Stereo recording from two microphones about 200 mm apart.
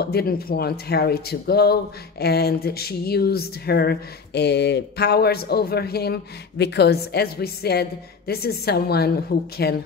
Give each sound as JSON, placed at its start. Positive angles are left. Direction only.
{"t": 0.0, "sound": "speech", "side_deg": 50}